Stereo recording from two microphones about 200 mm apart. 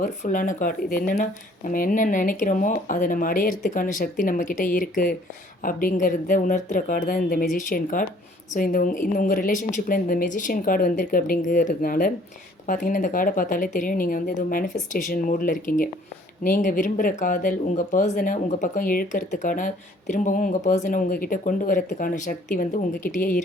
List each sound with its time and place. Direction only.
0.0 s a woman's voice: 40° left (ahead or behind)